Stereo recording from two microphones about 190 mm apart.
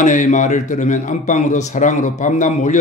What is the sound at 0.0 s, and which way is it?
A man's voice, 40° left (ahead or behind).